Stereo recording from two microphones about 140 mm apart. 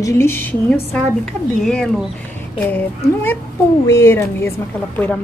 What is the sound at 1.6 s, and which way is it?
A woman's voice, 5° left (ahead or behind).